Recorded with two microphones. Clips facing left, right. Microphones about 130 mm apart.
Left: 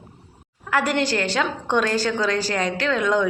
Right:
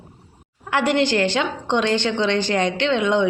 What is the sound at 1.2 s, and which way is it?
A woman's voice, 25° right (ahead or behind).